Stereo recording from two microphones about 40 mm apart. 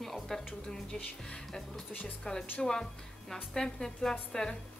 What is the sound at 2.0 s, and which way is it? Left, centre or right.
A woman's voice, centre.